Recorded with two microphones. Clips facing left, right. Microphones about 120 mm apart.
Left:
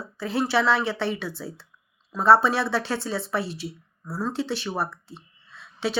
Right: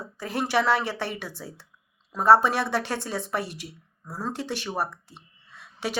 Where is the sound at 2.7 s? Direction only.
50° right (ahead or behind).